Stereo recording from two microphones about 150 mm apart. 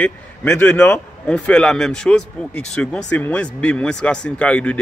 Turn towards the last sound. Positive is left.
turn(degrees=5)  # may be behind; listen again after turning